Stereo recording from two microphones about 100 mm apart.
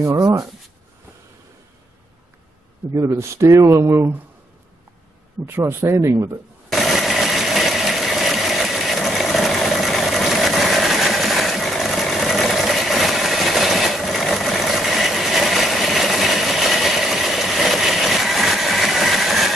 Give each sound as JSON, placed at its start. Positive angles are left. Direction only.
{"t": 0.0, "sound": "speech", "side_deg": -30}
{"t": 2.9, "sound": "speech", "side_deg": -35}
{"t": 5.4, "sound": "speech", "side_deg": -25}
{"t": 6.7, "sound": "a sound", "side_deg": 0}